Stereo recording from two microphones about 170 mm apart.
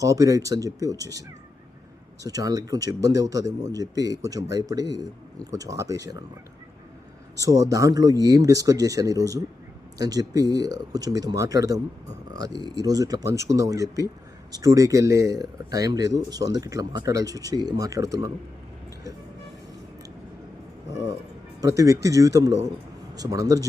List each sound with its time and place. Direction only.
0.0 s speech: 20° right (ahead or behind)
2.2 s speech: 20° right (ahead or behind)
7.4 s speech: 20° right (ahead or behind)
21.8 s speech: 20° right (ahead or behind)